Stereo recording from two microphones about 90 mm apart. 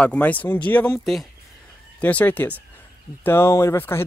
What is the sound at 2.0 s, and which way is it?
Speech, 15° left (ahead or behind).